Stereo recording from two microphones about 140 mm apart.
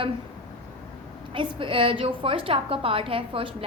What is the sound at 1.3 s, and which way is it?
A woman's voice, 40° right (ahead or behind).